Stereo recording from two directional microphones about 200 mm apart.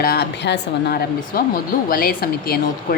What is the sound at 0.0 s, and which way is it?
Speech, 50° left (ahead or behind).